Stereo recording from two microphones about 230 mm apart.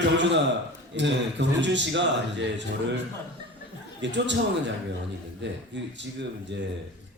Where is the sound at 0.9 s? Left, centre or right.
Right.